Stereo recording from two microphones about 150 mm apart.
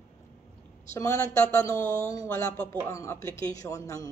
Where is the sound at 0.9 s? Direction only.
20° left (ahead or behind).